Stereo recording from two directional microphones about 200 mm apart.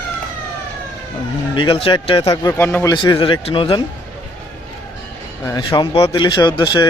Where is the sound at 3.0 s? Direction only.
25° left (ahead or behind).